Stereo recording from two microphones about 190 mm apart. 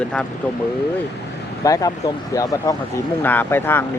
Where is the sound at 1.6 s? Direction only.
15° left (ahead or behind).